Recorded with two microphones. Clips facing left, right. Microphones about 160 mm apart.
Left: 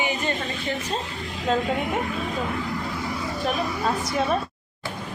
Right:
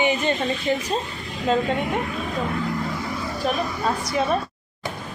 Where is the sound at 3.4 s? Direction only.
Centre (ahead or behind).